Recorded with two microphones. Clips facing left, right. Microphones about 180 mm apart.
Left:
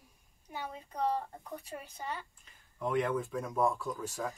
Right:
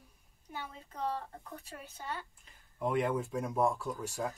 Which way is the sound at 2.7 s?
5° right (ahead or behind).